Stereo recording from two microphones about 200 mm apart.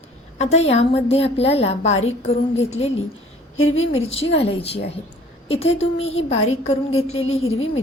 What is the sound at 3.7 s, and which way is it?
Speech, 90° left.